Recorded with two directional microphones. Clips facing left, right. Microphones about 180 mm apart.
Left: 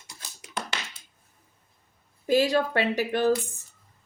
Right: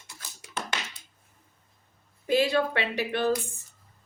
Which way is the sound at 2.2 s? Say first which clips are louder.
Left 2 dB; 40° left (ahead or behind).